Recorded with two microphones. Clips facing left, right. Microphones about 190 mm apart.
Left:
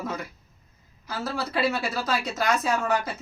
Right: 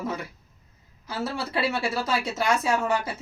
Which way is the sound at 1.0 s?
25° right (ahead or behind).